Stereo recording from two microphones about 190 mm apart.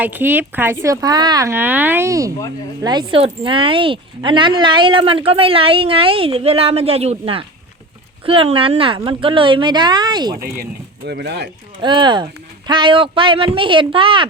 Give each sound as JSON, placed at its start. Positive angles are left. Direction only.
{"t": 0.0, "sound": "speech", "side_deg": -10}
{"t": 11.0, "sound": "speech", "side_deg": -60}
{"t": 11.8, "sound": "speech", "side_deg": -25}